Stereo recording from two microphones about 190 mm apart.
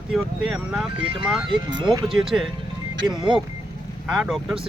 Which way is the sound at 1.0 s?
30° right (ahead or behind).